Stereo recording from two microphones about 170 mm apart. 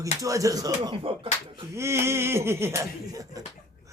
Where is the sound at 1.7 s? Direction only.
15° right (ahead or behind).